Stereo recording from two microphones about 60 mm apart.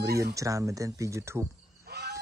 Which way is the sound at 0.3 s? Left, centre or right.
Right.